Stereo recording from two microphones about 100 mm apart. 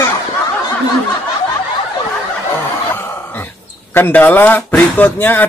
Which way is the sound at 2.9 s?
20° left (ahead or behind).